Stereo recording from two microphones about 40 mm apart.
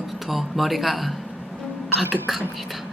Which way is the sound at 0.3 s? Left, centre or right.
Centre.